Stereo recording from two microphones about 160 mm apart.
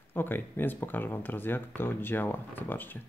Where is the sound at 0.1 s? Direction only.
10° left (ahead or behind).